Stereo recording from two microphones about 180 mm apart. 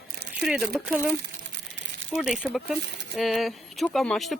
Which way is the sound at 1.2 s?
90° right.